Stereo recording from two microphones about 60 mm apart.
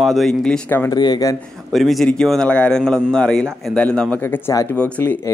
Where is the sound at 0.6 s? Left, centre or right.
Left.